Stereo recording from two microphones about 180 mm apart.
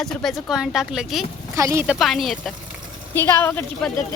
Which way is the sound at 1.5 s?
15° right (ahead or behind).